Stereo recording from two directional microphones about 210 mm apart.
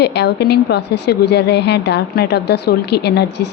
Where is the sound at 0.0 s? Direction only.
55° left (ahead or behind).